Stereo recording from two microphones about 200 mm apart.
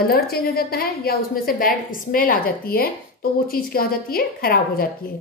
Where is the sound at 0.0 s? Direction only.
50° left (ahead or behind).